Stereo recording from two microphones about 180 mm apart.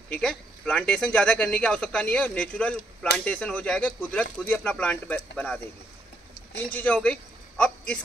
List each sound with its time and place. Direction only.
0.1 s speech: 5° left (ahead or behind)
6.7 s a man's voice: 10° left (ahead or behind)